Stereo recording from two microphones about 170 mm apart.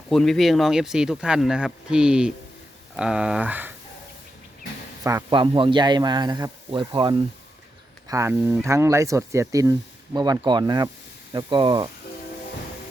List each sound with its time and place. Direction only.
0.1 s speech: centre (ahead or behind)
5.0 s a man's voice: 25° right (ahead or behind)